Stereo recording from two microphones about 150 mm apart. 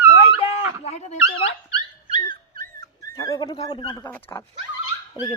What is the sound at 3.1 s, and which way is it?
Speech, 20° left (ahead or behind).